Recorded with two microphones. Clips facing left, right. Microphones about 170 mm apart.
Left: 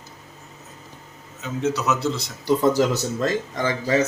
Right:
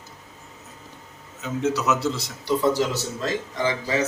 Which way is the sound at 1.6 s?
5° right (ahead or behind).